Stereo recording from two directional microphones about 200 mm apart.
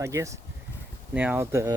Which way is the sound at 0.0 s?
15° right (ahead or behind).